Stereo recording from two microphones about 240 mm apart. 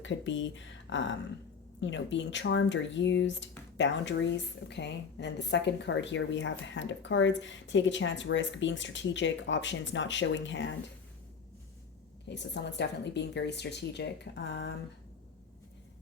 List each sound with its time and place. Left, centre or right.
0.0 s a woman's voice: left
12.3 s a woman's voice: left